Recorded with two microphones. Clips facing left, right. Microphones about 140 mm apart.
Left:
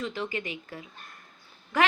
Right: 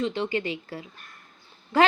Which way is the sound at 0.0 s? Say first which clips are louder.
Right 6 dB; 30° right (ahead or behind).